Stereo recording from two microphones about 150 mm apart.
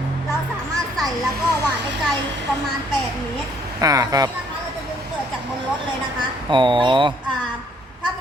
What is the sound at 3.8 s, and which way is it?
Speech, 25° right (ahead or behind).